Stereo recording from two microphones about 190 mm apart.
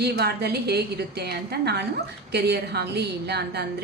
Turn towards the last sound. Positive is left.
turn(degrees=-60)  # may be behind; listen again after turning